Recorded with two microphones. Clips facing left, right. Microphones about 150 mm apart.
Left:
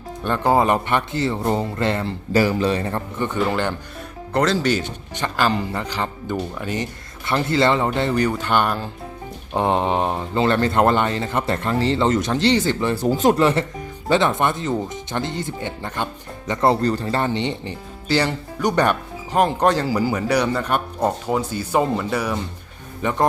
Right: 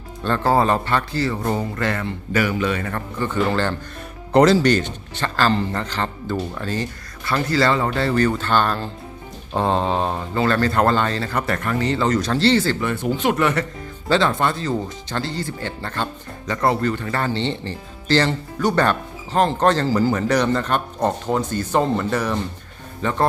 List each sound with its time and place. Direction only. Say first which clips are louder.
0.3 s speech: even; 15° left (ahead or behind)
4.4 s speech: right 6 dB; 10° right (ahead or behind)
4.6 s speech: right 3 dB; 10° left (ahead or behind)
12.8 s speech: left 3 dB; 35° left (ahead or behind)
13.3 s speech: left 2 dB; 30° left (ahead or behind)
16.8 s speech: left 2 dB; 35° left (ahead or behind)
17.1 s speech: left 1 dB; 20° left (ahead or behind)